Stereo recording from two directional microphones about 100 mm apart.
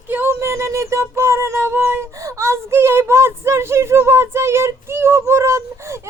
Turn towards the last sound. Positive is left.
turn(degrees=-25)  # may be behind; listen again after turning